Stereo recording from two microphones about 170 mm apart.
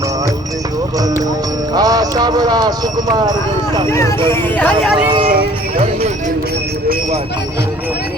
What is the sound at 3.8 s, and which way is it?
Speech, 15° left (ahead or behind).